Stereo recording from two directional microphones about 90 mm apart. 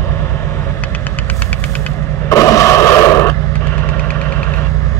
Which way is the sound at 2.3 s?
35° left (ahead or behind).